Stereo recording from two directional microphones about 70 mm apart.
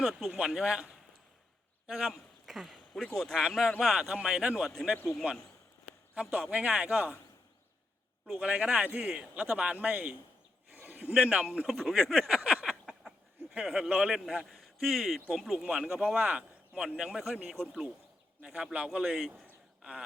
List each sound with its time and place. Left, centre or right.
0.0 s speech: centre
1.9 s speech: centre
3.0 s speech: centre
3.3 s speech: centre
4.1 s speech: centre
6.1 s speech: centre
8.4 s speech: centre
11.6 s speech: centre
12.3 s a sound: centre
12.6 s a sound: centre
13.5 s speech: centre
14.3 s a man's voice: centre
17.0 s speech: centre
19.8 s a sound: centre